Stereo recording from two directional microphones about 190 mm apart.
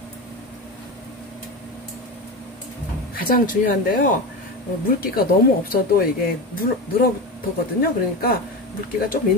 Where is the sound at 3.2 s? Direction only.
45° left (ahead or behind).